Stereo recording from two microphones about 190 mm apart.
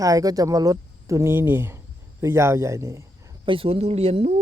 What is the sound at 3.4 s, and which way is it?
Speech, 30° right (ahead or behind).